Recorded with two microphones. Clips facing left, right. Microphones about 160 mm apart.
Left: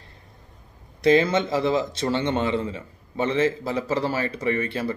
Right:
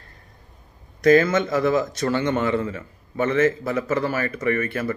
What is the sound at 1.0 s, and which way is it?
Speech, 25° left (ahead or behind).